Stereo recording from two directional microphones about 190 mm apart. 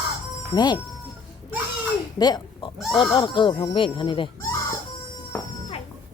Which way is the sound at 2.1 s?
20° left (ahead or behind).